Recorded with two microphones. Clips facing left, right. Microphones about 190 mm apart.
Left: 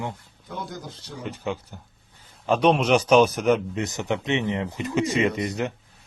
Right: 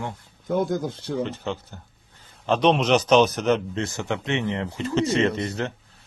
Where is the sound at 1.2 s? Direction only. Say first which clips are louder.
Right 1 dB; 10° left (ahead or behind).